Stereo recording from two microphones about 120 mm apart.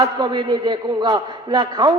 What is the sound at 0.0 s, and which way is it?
A man's voice, 35° right (ahead or behind).